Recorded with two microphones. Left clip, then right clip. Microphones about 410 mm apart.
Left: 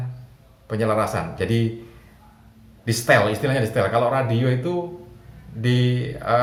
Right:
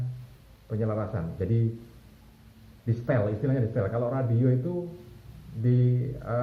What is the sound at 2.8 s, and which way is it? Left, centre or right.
Speech, centre.